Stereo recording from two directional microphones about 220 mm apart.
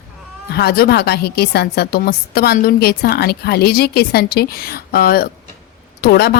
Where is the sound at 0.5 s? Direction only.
45° left (ahead or behind).